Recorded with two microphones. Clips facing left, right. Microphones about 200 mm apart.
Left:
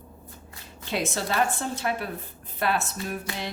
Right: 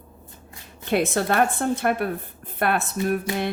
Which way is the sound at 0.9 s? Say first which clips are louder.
Right 7 dB; 55° right (ahead or behind).